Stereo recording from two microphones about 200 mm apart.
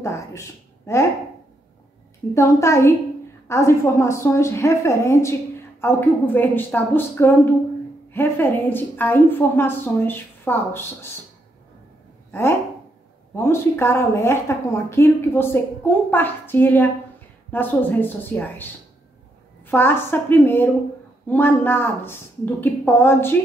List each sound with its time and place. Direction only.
0.0 s speech: 15° left (ahead or behind)
2.3 s a woman's voice: 15° left (ahead or behind)
12.3 s a woman's voice: 10° left (ahead or behind)
19.7 s a woman's voice: 10° left (ahead or behind)